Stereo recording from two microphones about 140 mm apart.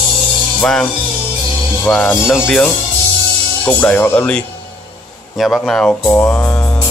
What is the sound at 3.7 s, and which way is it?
Speech, 10° left (ahead or behind).